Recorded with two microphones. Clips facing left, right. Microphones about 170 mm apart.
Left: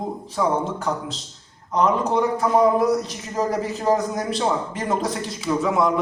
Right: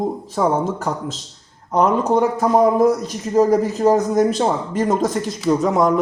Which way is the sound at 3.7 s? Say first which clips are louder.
Right 6 dB; 40° right (ahead or behind).